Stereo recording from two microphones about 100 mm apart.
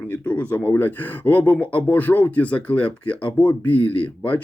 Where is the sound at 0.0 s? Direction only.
15° left (ahead or behind).